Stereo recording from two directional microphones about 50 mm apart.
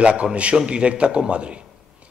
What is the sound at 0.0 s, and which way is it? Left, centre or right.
A man's voice, right.